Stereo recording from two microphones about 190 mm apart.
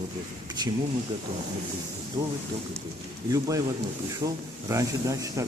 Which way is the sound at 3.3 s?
20° right (ahead or behind).